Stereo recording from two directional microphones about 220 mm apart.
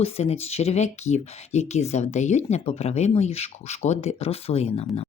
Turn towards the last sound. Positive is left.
turn(degrees=30)  # may be behind; listen again after turning